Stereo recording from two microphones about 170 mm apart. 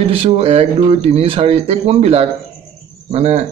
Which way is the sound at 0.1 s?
35° right (ahead or behind).